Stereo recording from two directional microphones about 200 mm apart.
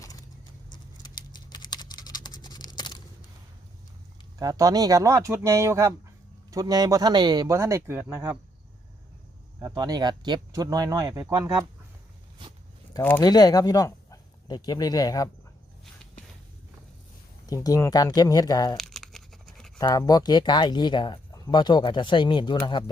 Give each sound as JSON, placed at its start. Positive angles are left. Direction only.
{"t": 0.0, "sound": "clip-clop", "side_deg": 20}
{"t": 0.7, "sound": "typing", "side_deg": 20}
{"t": 4.4, "sound": "speech", "side_deg": -15}
{"t": 9.6, "sound": "speech", "side_deg": -20}
{"t": 12.9, "sound": "speech", "side_deg": 10}
{"t": 17.4, "sound": "speech", "side_deg": 20}
{"t": 18.8, "sound": "tearing", "side_deg": 0}
{"t": 19.8, "sound": "speech", "side_deg": 20}